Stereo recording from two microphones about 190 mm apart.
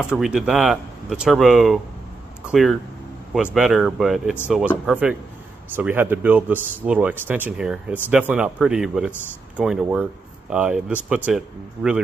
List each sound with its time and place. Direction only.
0.2 s speech: centre (ahead or behind)